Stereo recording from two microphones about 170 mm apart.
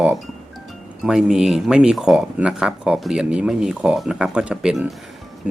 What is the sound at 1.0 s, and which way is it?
Speech, 5° right (ahead or behind).